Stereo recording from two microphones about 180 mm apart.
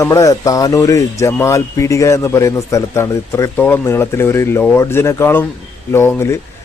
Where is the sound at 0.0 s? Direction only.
15° left (ahead or behind).